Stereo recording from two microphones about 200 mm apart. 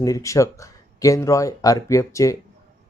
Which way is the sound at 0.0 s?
15° left (ahead or behind).